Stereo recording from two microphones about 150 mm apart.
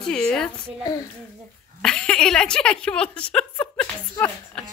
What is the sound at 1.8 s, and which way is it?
A woman's voice, 5° left (ahead or behind).